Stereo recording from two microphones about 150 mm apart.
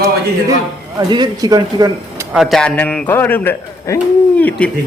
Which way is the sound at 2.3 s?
Centre (ahead or behind).